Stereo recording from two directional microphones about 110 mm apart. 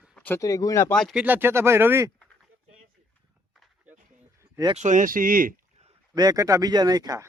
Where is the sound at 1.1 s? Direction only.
5° right (ahead or behind).